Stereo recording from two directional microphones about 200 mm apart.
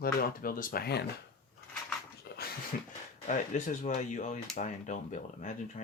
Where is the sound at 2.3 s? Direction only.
50° left (ahead or behind).